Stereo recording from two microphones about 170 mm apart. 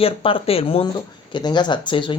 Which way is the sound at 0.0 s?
30° left (ahead or behind).